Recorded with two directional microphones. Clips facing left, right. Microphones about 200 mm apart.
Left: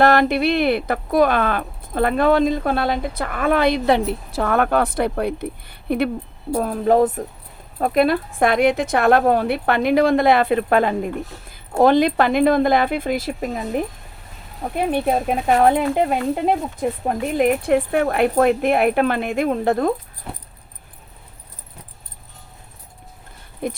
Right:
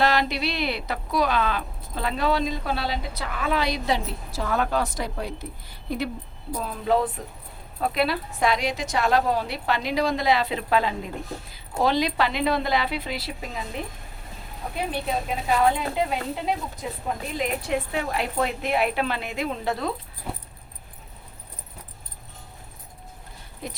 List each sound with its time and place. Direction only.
0.0 s speech: 55° left (ahead or behind)
6.6 s speech: 50° left (ahead or behind)
20.3 s keys jangling: 5° right (ahead or behind)
23.6 s speech: 55° left (ahead or behind)